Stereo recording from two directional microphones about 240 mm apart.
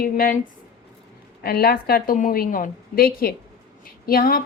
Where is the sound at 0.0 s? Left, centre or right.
Left.